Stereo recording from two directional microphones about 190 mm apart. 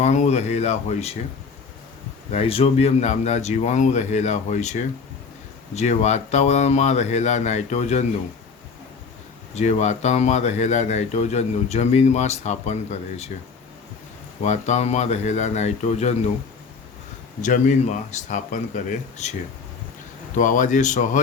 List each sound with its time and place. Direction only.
0.0 s speech: 40° left (ahead or behind)
2.3 s speech: 30° left (ahead or behind)
9.6 s speech: 35° left (ahead or behind)
14.4 s speech: 40° left (ahead or behind)
17.4 s speech: 40° left (ahead or behind)
20.3 s speech: 40° left (ahead or behind)